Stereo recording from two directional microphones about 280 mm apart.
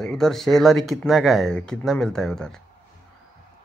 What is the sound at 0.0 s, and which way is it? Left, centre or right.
Speech, centre.